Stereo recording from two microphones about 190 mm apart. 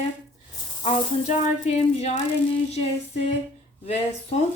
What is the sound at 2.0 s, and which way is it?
Speech, 35° left (ahead or behind).